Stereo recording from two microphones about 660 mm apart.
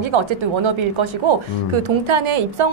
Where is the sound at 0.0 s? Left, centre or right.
Right.